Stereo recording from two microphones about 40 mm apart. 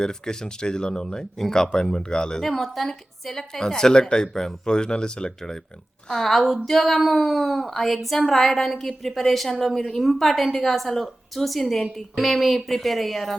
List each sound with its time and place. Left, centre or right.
0.0 s speech: centre
2.4 s a woman's voice: centre